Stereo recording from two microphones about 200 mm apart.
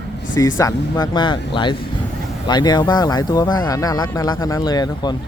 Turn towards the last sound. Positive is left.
turn(degrees=20)  # may be behind; listen again after turning